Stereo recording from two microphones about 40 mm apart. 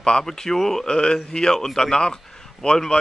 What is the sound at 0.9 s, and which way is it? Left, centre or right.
Speech, left.